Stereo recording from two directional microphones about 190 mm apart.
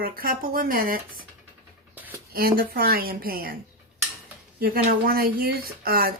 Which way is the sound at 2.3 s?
50° right (ahead or behind).